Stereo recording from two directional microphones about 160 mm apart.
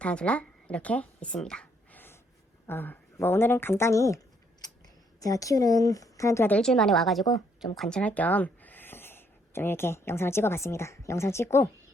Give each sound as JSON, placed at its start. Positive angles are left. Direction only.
{"t": 0.0, "sound": "speech", "side_deg": 5}
{"t": 5.2, "sound": "speech", "side_deg": 20}
{"t": 6.6, "sound": "a woman's voice", "side_deg": 0}